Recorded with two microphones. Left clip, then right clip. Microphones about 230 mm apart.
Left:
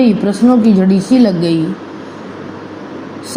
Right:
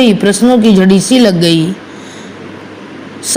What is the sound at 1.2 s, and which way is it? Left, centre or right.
Speech, right.